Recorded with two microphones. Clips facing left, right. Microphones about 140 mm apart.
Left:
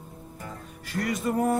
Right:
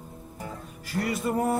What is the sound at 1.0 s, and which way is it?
Music, 5° right (ahead or behind).